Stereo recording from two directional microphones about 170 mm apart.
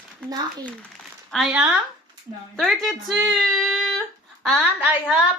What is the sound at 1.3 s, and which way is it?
Speech, 5° right (ahead or behind).